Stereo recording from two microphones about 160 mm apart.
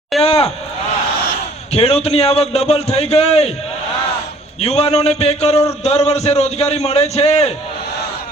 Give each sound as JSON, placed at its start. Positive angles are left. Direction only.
{"t": 0.1, "sound": "a sound", "side_deg": 0}
{"t": 1.7, "sound": "a man's voice", "side_deg": 40}
{"t": 4.6, "sound": "a man's voice", "side_deg": 40}